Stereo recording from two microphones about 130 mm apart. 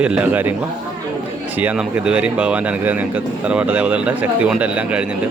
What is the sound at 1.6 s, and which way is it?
A man's voice, 10° right (ahead or behind).